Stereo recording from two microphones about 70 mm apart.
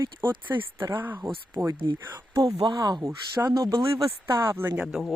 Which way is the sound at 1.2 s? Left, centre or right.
Right.